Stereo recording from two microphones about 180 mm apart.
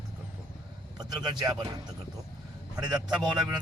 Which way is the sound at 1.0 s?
20° right (ahead or behind).